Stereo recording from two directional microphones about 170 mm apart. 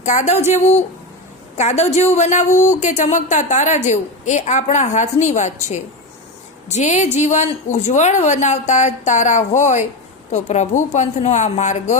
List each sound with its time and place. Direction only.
0.0 s a woman's voice: 45° left (ahead or behind)